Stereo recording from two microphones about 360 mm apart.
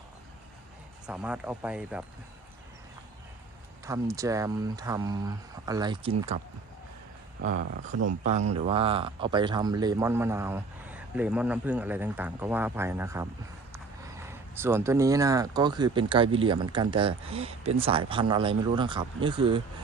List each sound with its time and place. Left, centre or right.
1.0 s speech: centre
3.8 s speech: centre
7.4 s speech: right